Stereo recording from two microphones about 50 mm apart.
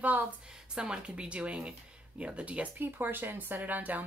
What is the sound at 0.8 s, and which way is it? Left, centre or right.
Speech, right.